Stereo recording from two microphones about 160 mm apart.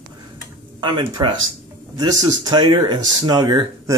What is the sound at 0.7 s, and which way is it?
Speech, 30° right (ahead or behind).